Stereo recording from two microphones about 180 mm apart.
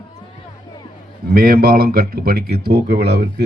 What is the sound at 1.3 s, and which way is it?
Speech, 55° right (ahead or behind).